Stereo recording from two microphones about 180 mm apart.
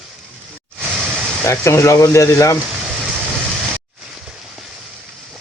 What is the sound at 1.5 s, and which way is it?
Speech, 15° left (ahead or behind).